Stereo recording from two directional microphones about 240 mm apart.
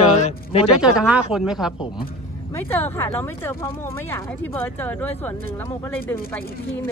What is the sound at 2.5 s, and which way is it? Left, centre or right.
Speech, centre.